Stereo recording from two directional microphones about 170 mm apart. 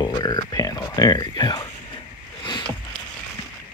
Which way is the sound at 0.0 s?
25° left (ahead or behind).